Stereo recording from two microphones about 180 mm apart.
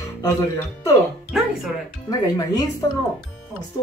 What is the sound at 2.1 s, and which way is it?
Speech, 20° left (ahead or behind).